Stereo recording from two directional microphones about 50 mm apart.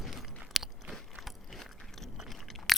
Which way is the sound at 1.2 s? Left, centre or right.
Centre.